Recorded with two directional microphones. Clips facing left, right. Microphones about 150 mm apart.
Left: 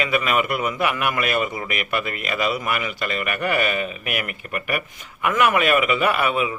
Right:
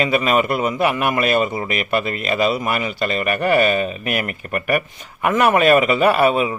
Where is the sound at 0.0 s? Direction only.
30° right (ahead or behind).